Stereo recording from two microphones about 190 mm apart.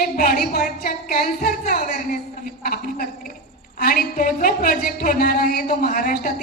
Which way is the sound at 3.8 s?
45° left (ahead or behind).